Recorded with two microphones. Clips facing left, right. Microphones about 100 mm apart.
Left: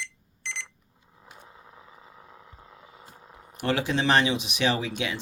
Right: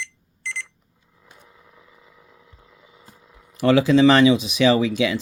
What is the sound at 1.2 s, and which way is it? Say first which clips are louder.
Vehicle: left 1 dB; 30° left (ahead or behind).